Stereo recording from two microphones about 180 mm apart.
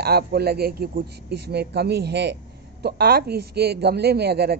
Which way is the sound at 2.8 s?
60° right (ahead or behind).